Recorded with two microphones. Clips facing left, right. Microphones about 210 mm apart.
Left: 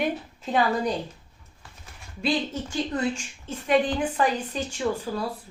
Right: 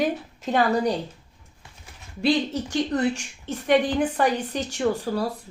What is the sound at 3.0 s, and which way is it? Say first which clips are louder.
Speech: right 3 dB; 70° right (ahead or behind).